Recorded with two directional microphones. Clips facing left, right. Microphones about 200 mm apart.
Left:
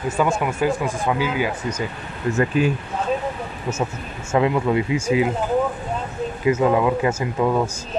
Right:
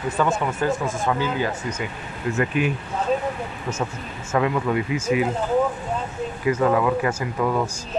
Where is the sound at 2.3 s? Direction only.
35° left (ahead or behind).